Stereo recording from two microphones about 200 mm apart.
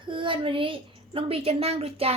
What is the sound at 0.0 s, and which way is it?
A woman's voice, 25° right (ahead or behind).